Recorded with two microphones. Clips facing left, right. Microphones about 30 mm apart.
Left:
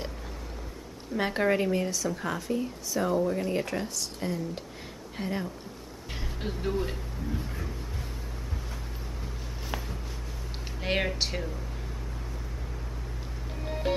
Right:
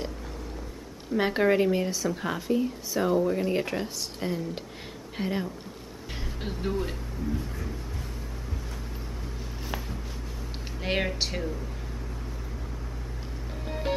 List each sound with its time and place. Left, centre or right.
1.1 s speech: centre
6.4 s speech: centre
10.8 s speech: centre